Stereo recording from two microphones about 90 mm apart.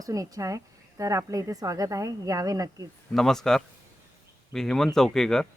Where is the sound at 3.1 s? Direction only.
5° left (ahead or behind).